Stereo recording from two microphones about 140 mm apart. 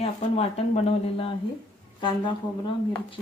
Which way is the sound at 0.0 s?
45° left (ahead or behind).